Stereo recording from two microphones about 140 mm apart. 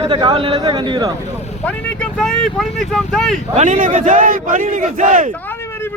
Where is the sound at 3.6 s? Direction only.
70° right (ahead or behind).